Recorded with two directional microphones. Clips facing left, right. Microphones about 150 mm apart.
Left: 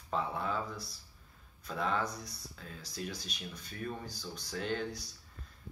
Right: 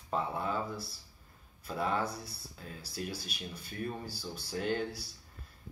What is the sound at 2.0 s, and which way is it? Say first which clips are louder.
Speech: right 2 dB; 30° right (ahead or behind).